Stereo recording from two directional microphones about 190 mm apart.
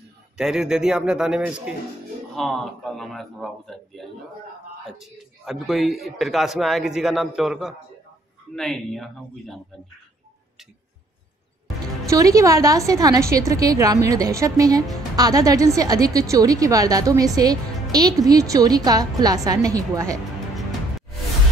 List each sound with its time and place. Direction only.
0.4 s a man's voice: 5° right (ahead or behind)
12.1 s a woman's voice: 15° right (ahead or behind)